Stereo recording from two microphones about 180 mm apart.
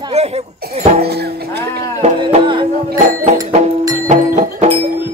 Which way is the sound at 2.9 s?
45° right (ahead or behind).